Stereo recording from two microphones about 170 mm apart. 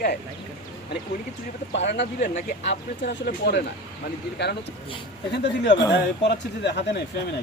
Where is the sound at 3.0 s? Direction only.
80° left.